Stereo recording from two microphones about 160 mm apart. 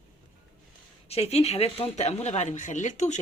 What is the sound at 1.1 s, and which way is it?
Speech, 40° left (ahead or behind).